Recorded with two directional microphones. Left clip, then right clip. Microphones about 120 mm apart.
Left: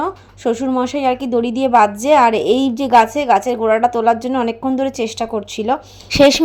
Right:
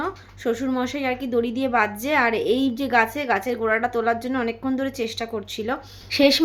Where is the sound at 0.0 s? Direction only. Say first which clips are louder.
Left 7 dB; 40° left (ahead or behind).